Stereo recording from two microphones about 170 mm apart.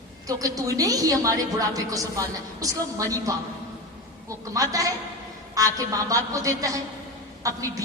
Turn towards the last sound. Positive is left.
turn(degrees=-20)  # may be behind; listen again after turning